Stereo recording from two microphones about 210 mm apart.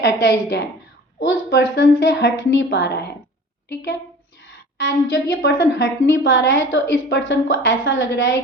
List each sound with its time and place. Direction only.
0.0 s a woman's voice: 55° left (ahead or behind)
4.8 s a woman's voice: 60° left (ahead or behind)